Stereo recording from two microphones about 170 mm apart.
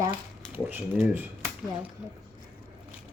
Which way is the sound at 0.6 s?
10° right (ahead or behind).